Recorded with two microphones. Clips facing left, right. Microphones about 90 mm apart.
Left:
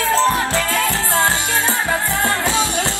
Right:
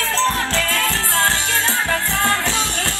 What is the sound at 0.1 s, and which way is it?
Music, 10° left (ahead or behind).